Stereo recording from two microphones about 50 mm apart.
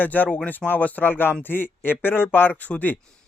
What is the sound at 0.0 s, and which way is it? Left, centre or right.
A man's voice, left.